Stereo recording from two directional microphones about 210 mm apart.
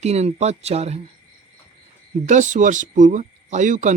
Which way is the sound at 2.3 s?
35° right (ahead or behind).